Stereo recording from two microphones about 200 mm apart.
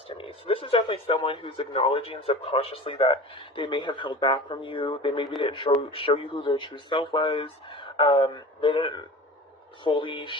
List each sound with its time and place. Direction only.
0.1 s speech: 25° left (ahead or behind)